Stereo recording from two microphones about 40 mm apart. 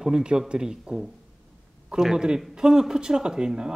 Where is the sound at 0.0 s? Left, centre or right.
Centre.